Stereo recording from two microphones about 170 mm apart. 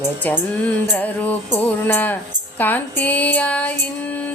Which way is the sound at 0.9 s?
10° left (ahead or behind).